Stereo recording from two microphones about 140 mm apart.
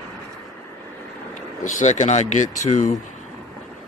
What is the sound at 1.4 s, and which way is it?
Speech, 60° left (ahead or behind).